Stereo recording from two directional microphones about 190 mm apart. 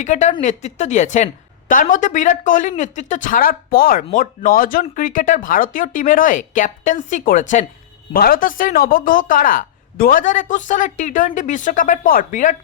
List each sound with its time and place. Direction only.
0.0 s a woman's voice: 40° left (ahead or behind)